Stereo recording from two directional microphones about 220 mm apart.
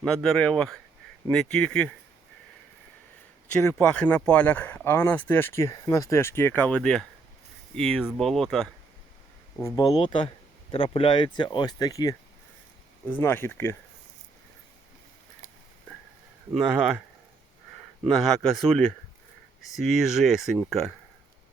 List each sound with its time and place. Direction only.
0.0 s speech: centre (ahead or behind)
3.5 s speech: 10° left (ahead or behind)
9.6 s speech: 15° left (ahead or behind)
16.5 s speech: 5° right (ahead or behind)
18.1 s speech: centre (ahead or behind)